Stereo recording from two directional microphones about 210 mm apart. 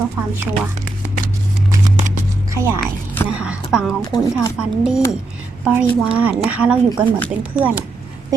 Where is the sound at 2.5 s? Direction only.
10° right (ahead or behind).